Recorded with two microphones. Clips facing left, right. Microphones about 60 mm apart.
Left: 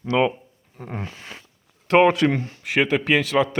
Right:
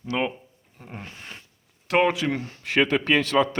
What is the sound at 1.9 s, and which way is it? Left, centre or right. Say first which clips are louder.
Speech: left 5 dB; left.